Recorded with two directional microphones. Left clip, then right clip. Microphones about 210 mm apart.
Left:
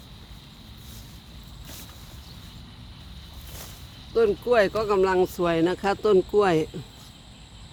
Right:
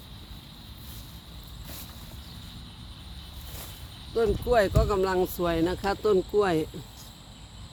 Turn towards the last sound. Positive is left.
turn(degrees=40)  # may be behind; listen again after turning